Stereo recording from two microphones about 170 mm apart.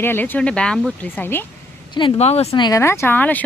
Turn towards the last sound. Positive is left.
turn(degrees=10)  # may be behind; listen again after turning